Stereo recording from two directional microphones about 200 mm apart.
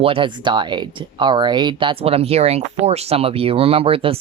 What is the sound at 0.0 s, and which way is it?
Speech, 25° right (ahead or behind).